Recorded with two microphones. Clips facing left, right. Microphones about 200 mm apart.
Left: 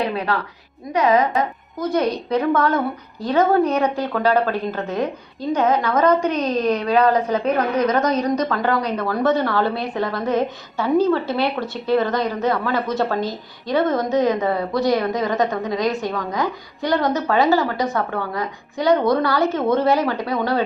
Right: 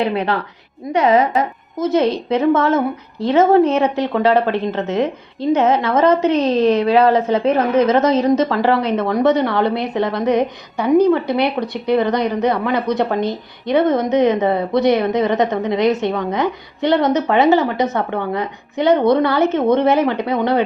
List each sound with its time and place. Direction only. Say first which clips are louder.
0.0 s a woman's voice: right 4 dB; 25° right (ahead or behind)